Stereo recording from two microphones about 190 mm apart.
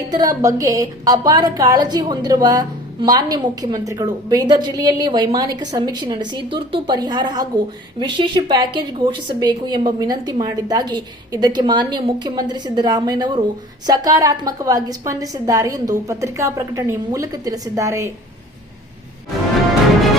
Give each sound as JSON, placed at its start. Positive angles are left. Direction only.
{"t": 0.1, "sound": "a woman's voice", "side_deg": -20}